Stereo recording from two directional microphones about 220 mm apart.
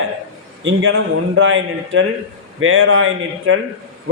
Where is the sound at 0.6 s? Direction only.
65° right (ahead or behind).